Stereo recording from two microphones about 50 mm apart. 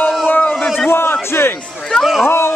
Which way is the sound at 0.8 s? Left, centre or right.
Left.